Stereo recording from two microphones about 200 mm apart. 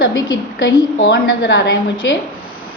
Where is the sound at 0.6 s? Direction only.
60° left (ahead or behind).